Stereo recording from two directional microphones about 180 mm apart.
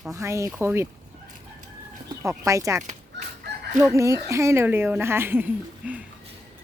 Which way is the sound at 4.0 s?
15° right (ahead or behind).